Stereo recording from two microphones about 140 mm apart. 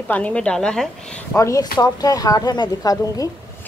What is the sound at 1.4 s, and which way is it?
Speech, 20° left (ahead or behind).